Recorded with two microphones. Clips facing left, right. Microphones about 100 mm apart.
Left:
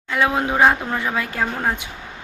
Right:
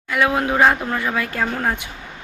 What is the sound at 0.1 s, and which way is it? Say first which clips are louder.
Speech: right 1 dB; 25° left (ahead or behind).